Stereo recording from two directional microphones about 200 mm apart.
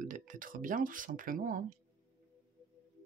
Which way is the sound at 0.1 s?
40° right (ahead or behind).